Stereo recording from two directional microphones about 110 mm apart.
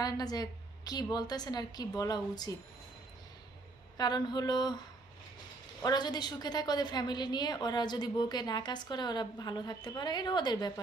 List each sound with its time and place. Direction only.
0.0 s a woman's voice: 35° left (ahead or behind)
3.9 s a woman's voice: 40° left (ahead or behind)
5.8 s a woman's voice: 40° left (ahead or behind)